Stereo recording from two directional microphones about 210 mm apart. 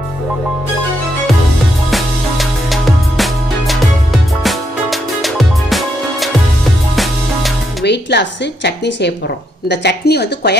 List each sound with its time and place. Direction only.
1.9 s music: centre (ahead or behind)
7.8 s speech: 55° left (ahead or behind)